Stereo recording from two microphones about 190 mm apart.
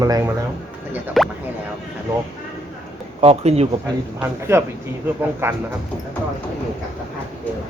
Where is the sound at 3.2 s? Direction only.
35° right (ahead or behind).